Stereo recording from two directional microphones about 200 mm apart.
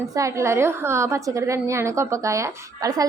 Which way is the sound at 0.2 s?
15° right (ahead or behind).